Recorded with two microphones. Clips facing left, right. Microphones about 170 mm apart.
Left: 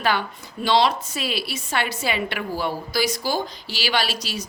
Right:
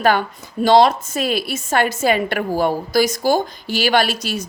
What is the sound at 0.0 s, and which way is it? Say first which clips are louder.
Speech: right 6 dB; 45° right (ahead or behind).